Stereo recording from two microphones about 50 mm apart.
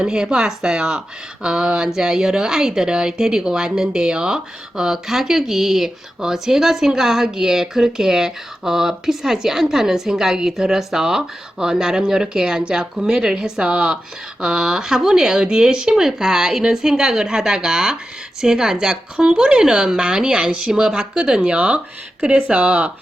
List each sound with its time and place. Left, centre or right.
0.0 s speech: centre